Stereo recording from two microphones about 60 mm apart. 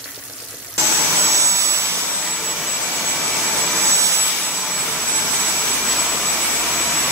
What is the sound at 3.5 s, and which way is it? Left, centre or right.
Jet engine, centre.